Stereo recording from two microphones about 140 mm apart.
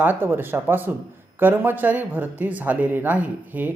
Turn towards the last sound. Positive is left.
turn(degrees=-10)  # may be behind; listen again after turning